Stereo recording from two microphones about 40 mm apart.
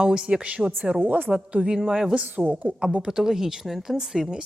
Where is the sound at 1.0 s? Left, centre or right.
Right.